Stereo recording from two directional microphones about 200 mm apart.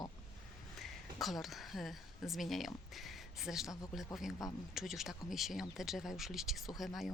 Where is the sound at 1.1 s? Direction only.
Centre (ahead or behind).